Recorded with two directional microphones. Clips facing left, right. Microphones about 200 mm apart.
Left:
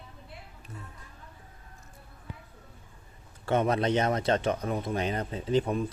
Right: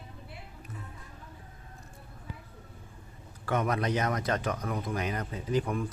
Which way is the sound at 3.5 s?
25° left (ahead or behind).